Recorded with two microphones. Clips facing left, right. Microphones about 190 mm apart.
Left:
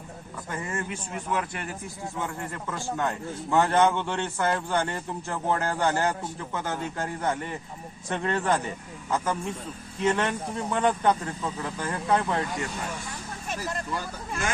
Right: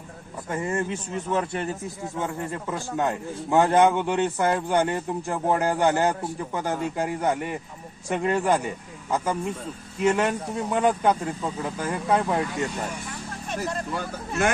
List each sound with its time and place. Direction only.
0.5 s a man's voice: 25° right (ahead or behind); by 12.4 s 10° right (ahead or behind)